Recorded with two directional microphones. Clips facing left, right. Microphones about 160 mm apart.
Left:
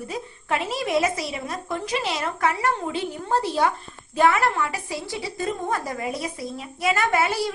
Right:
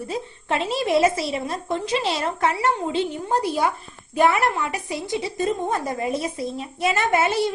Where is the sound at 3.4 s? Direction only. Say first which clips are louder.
Even; 10° right (ahead or behind).